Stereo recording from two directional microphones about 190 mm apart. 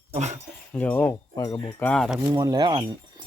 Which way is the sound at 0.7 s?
10° left (ahead or behind).